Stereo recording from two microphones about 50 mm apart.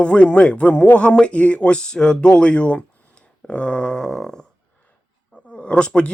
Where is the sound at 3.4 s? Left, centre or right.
Left.